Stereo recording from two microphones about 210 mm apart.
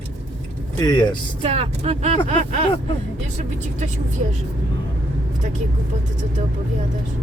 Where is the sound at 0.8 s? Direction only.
20° left (ahead or behind).